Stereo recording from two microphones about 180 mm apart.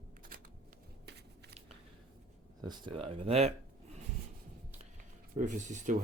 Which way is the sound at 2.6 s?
25° right (ahead or behind).